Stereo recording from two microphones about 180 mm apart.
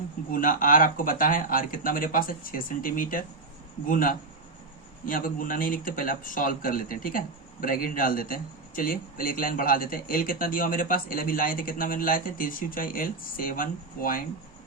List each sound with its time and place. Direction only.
0.3 s speech: 50° left (ahead or behind)